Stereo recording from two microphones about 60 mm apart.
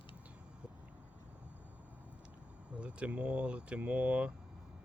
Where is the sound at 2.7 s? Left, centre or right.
Centre.